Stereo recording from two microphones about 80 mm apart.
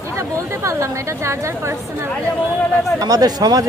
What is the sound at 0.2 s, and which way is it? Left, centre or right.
Speech, right.